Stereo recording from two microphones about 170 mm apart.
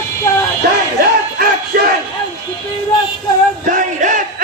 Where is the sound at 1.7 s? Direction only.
60° right (ahead or behind).